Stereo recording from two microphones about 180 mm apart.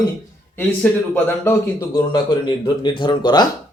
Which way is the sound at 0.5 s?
10° left (ahead or behind).